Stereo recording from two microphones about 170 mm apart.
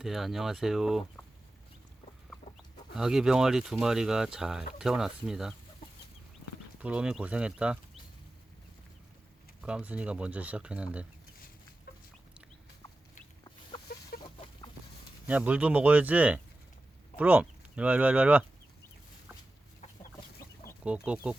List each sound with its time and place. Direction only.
0.0 s speech: centre (ahead or behind)
2.9 s speech: centre (ahead or behind)
6.7 s speech: 5° right (ahead or behind)
9.6 s speech: 5° right (ahead or behind)
13.4 s chicken: 25° left (ahead or behind)
14.2 s a sound: 25° left (ahead or behind)
15.3 s speech: 10° right (ahead or behind)
20.8 s speech: 5° right (ahead or behind)